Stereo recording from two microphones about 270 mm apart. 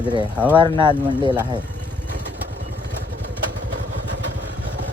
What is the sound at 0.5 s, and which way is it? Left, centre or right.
Speech, centre.